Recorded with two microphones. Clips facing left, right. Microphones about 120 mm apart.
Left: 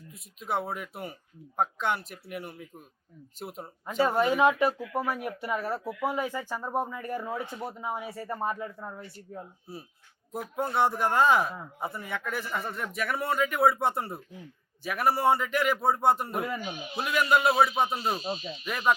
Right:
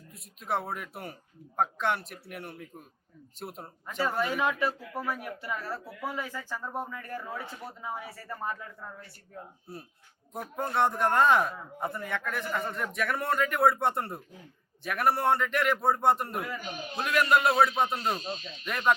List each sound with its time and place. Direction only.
0.1 s a man's voice: centre (ahead or behind)
4.0 s speech: 20° left (ahead or behind)
5.9 s speech: 45° left (ahead or behind)
6.1 s speech: 20° left (ahead or behind)
9.7 s a man's voice: centre (ahead or behind)